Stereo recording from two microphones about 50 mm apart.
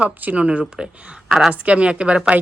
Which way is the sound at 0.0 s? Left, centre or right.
Right.